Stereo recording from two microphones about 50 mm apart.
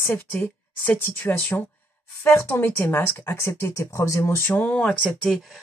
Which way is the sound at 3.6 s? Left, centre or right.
Left.